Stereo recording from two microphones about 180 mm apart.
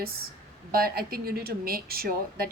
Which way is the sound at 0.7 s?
55° right (ahead or behind).